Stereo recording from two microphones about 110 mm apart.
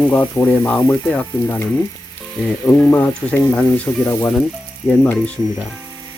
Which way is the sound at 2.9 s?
15° left (ahead or behind).